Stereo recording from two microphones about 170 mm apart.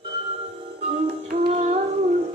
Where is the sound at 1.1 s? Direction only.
50° right (ahead or behind).